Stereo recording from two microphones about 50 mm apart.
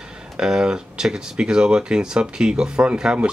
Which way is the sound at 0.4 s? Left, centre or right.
Centre.